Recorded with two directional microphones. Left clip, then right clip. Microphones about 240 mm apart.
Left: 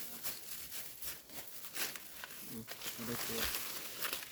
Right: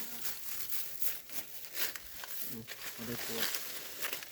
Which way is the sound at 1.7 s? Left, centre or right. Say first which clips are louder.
Right 2 dB; centre.